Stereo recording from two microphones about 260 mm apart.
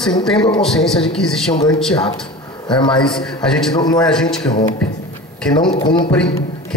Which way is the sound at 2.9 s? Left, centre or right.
Centre.